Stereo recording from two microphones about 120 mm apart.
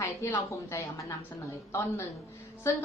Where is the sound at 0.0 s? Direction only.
25° left (ahead or behind).